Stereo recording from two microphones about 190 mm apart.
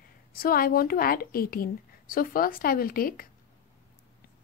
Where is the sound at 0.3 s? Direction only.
50° left (ahead or behind).